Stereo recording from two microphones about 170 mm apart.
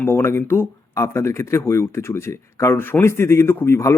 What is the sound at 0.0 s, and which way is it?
Speech, 15° left (ahead or behind).